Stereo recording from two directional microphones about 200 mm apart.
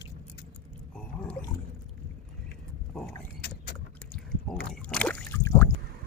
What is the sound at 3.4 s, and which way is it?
Vehicle, 55° left (ahead or behind).